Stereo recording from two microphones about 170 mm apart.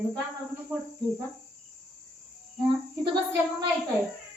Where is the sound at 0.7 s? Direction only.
5° right (ahead or behind).